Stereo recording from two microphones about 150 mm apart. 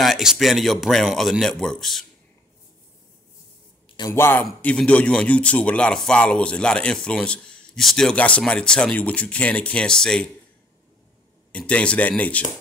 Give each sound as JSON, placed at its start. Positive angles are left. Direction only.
{"t": 0.0, "sound": "speech", "side_deg": 0}
{"t": 4.1, "sound": "a man's voice", "side_deg": 15}
{"t": 11.5, "sound": "a man's voice", "side_deg": 10}